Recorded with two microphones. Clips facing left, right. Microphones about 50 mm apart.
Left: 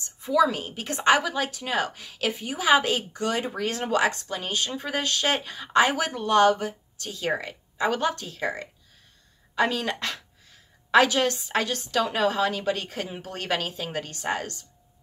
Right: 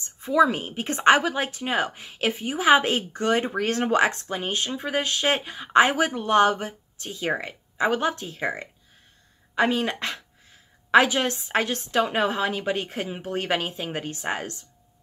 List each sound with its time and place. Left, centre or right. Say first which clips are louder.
0.0 s speech: right 2 dB; right
4.7 s speech: right 2 dB; centre